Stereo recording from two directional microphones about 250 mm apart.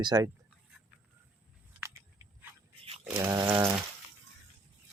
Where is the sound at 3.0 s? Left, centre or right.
Centre.